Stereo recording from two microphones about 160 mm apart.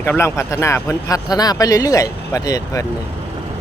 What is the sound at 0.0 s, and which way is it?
Speech, 15° left (ahead or behind).